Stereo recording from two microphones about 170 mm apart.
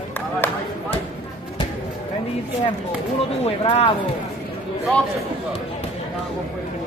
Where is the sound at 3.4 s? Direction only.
35° left (ahead or behind).